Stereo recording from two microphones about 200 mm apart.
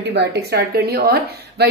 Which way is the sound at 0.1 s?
60° right (ahead or behind).